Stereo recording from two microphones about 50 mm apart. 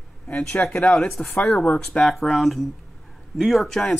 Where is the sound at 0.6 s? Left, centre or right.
Left.